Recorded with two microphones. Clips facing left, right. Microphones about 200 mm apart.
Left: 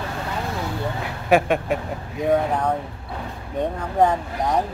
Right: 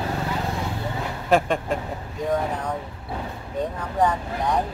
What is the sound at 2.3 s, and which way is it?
Speech, 60° left (ahead or behind).